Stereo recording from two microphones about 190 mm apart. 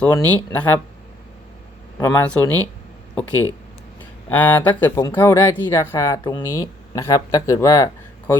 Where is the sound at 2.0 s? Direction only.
15° left (ahead or behind).